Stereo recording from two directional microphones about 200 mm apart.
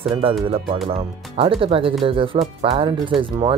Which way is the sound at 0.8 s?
30° right (ahead or behind).